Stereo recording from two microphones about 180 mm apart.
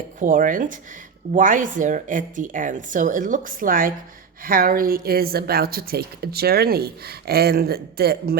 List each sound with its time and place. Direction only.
0.2 s a woman's voice: 50° right (ahead or behind)